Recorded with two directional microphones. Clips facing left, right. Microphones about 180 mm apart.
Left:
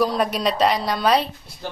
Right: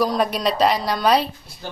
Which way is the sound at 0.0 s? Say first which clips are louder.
Even; centre (ahead or behind).